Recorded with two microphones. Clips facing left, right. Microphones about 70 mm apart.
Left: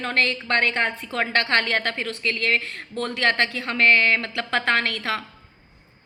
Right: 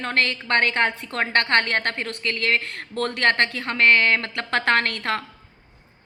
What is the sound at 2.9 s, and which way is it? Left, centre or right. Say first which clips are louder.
A woman's voice: right 2 dB; right.